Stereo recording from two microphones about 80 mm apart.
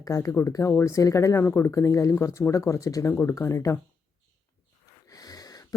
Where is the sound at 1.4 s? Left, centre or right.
Left.